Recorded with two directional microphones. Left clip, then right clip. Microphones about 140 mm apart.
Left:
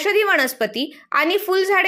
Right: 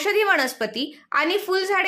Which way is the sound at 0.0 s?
20° left (ahead or behind).